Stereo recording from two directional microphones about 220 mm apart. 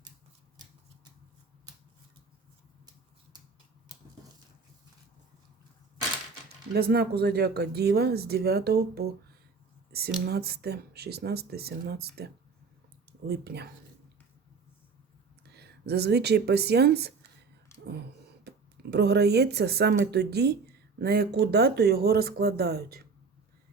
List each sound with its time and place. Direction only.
6.7 s speech: 45° right (ahead or behind)
9.9 s a sound: 45° right (ahead or behind)
10.2 s speech: 45° right (ahead or behind)
15.4 s speech: 50° right (ahead or behind)
18.4 s speech: 50° right (ahead or behind)